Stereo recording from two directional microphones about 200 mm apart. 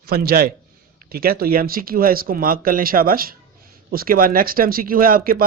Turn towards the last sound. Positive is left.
turn(degrees=-45)  # may be behind; listen again after turning